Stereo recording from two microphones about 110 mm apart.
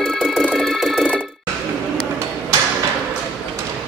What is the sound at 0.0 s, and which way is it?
Music, centre (ahead or behind).